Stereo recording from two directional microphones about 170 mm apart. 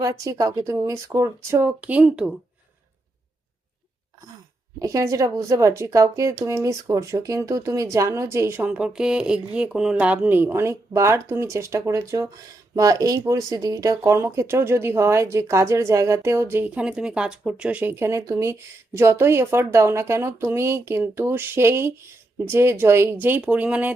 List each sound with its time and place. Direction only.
0.0 s speech: 20° right (ahead or behind)
4.8 s speech: 20° right (ahead or behind)